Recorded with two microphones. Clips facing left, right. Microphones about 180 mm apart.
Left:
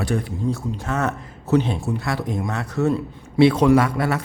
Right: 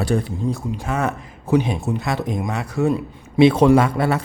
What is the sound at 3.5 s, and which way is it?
Speech, 30° right (ahead or behind).